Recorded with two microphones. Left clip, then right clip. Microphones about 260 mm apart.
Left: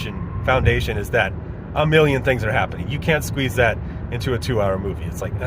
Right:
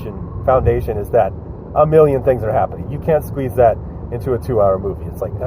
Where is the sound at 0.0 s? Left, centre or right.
Left.